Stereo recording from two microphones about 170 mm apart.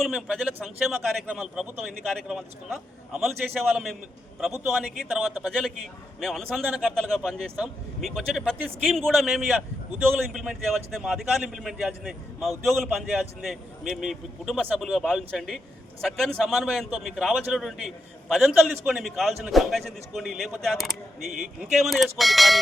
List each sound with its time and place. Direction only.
0.0 s a man's voice: centre (ahead or behind)